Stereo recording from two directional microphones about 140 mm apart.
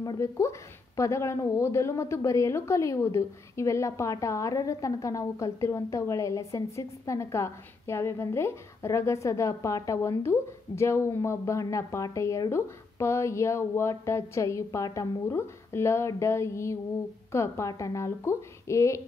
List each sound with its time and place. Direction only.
0.0 s a woman's voice: 25° left (ahead or behind)